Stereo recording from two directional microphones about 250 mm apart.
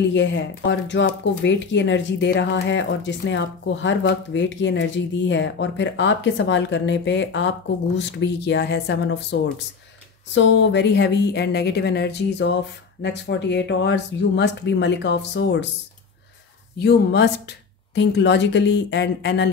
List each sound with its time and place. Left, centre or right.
0.1 s speech: left
16.7 s speech: left